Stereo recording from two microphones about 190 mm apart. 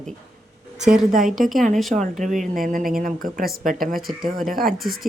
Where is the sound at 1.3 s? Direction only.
Centre (ahead or behind).